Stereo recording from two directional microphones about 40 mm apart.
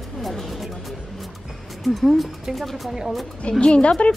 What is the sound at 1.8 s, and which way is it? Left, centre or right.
Speech, centre.